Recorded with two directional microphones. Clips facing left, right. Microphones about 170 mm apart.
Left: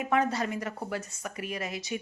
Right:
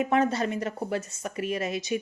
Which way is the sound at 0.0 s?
25° right (ahead or behind).